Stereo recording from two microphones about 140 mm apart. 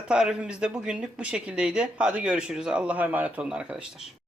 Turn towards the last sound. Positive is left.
turn(degrees=-10)  # may be behind; listen again after turning